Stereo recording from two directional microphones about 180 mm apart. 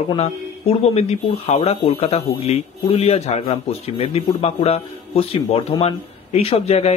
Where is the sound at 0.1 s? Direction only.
35° left (ahead or behind).